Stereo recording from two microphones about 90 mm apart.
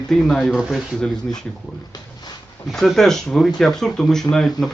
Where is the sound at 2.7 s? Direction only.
5° left (ahead or behind).